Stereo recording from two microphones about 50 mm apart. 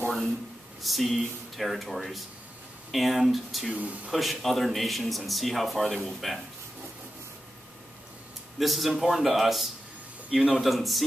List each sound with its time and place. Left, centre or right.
0.8 s a man's voice: centre
3.7 s speech: right
4.1 s a man's voice: centre
8.5 s a man's voice: centre